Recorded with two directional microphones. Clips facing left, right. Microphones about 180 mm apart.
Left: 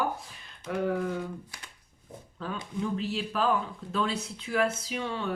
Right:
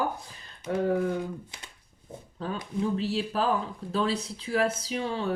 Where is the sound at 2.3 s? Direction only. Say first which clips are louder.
Right 3 dB; 35° right (ahead or behind).